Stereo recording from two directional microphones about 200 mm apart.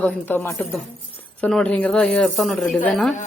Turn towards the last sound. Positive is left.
turn(degrees=5)  # may be behind; listen again after turning